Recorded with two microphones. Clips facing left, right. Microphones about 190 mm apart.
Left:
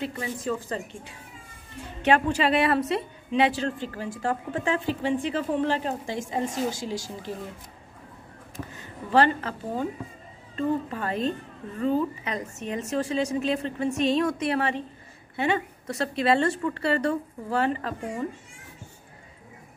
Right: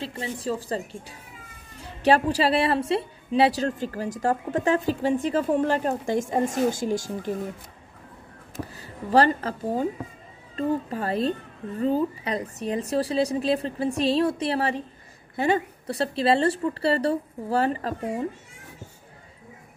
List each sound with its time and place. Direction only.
0.0 s a woman's voice: 30° right (ahead or behind); by 7.3 s 50° right (ahead or behind)
8.7 s a woman's voice: 35° right (ahead or behind)